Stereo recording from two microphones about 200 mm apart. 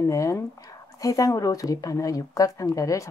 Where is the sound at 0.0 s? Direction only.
15° left (ahead or behind).